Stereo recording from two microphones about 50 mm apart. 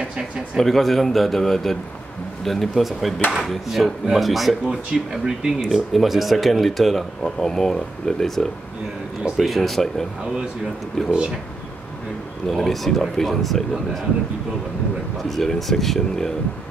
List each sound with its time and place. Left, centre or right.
0.6 s speech: centre
4.6 s speech: centre
12.4 s speech: centre
15.2 s speech: centre